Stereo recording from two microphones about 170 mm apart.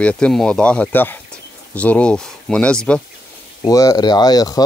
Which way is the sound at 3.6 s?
20° left (ahead or behind).